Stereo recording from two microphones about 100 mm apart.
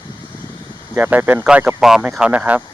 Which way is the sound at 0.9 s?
20° right (ahead or behind).